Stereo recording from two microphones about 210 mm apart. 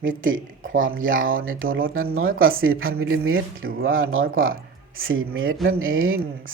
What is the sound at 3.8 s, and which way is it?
Speech, 70° right (ahead or behind).